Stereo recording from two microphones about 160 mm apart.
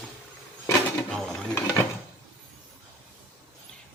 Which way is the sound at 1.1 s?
5° left (ahead or behind).